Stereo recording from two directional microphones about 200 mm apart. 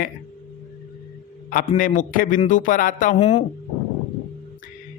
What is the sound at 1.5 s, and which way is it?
A man's voice, 40° left (ahead or behind).